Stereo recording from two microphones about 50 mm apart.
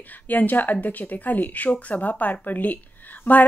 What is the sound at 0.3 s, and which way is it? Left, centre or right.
A woman's voice, left.